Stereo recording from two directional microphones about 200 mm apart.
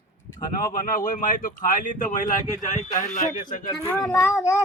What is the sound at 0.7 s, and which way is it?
Speech, 40° left (ahead or behind).